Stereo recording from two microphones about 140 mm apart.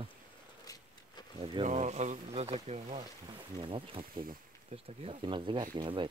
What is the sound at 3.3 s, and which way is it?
Speech, 35° right (ahead or behind).